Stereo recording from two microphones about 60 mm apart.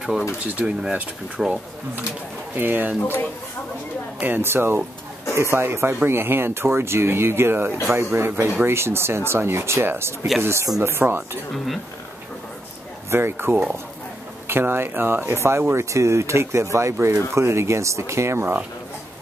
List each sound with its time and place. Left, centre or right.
0.6 s speech: centre
2.5 s speech: right
3.0 s speech: left
4.4 s speech: right
11.5 s speech: centre
13.1 s speech: right